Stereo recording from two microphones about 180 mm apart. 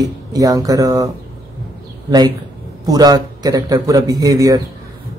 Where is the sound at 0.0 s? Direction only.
20° right (ahead or behind).